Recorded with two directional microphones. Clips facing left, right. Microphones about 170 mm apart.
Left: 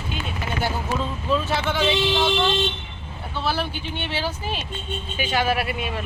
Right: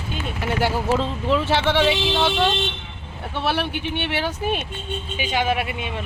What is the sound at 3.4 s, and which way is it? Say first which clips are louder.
Speech: right 3 dB; 70° right (ahead or behind).